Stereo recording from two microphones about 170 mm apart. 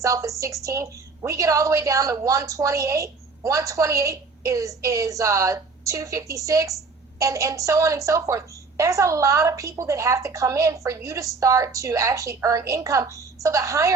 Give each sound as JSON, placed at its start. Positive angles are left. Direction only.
{"t": 0.0, "sound": "a woman's voice", "side_deg": -20}